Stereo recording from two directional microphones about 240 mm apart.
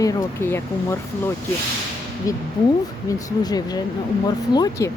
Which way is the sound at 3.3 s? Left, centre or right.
Centre.